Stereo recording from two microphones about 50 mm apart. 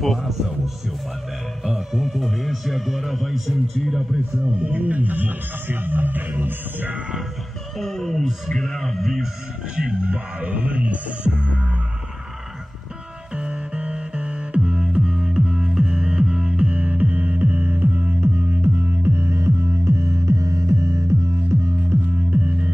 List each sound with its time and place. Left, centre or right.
0.0 s speech: centre
1.6 s speech: centre
4.6 s speech: right
7.8 s speech: centre
9.8 s music: centre
13.4 s music: centre; by 21.0 s right
22.3 s music: right